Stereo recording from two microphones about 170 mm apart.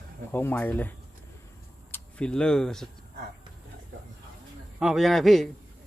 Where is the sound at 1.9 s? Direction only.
5° left (ahead or behind).